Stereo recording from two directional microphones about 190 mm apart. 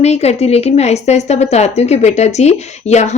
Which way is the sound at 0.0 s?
35° left (ahead or behind).